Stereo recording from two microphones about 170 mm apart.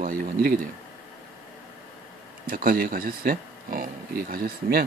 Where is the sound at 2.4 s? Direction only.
55° right (ahead or behind).